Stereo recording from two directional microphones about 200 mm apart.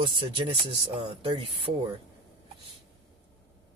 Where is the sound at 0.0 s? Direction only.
25° right (ahead or behind).